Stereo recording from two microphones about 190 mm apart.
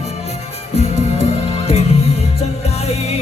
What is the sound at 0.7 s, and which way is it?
Music, 35° left (ahead or behind).